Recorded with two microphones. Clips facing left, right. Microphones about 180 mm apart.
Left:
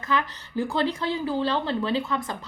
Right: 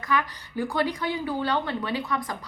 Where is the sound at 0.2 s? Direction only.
25° left (ahead or behind).